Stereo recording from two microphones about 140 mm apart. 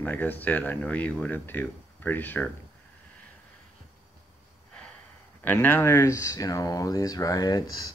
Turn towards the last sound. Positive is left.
turn(degrees=30)  # may be behind; listen again after turning